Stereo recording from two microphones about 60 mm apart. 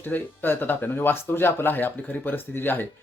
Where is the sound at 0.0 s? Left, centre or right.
Left.